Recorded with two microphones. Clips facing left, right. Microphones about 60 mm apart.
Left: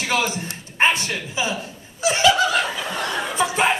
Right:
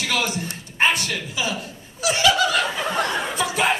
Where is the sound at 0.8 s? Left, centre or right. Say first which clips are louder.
Left 1 dB; left.